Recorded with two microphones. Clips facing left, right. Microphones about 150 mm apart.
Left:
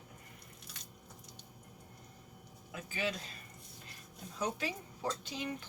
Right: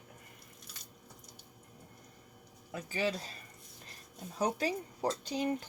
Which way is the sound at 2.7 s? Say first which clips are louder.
Right 4 dB; 35° right (ahead or behind).